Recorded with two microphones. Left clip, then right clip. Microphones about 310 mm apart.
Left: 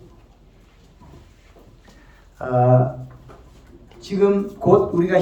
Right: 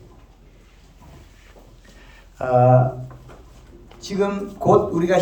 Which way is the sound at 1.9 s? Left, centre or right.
Right.